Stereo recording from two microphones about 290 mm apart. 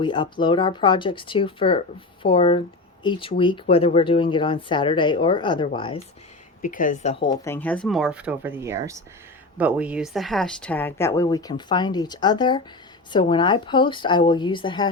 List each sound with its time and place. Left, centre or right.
0.0 s a woman's voice: centre
6.6 s a woman's voice: left